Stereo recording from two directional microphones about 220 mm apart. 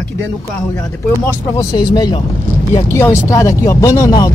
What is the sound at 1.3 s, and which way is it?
Speech, 15° left (ahead or behind).